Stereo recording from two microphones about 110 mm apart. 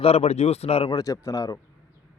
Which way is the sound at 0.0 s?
70° left (ahead or behind).